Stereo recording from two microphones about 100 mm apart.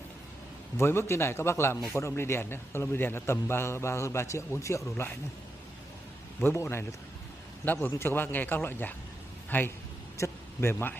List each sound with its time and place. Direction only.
0.7 s a man's voice: 25° left (ahead or behind)
6.4 s a man's voice: 25° left (ahead or behind)